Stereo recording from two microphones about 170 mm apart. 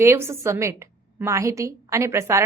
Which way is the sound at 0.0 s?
15° right (ahead or behind).